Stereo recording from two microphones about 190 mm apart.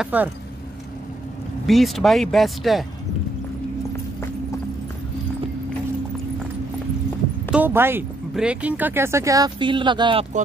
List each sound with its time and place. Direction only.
0.0 s speech: 10° right (ahead or behind)
1.7 s speech: centre (ahead or behind)
7.5 s speech: 10° right (ahead or behind)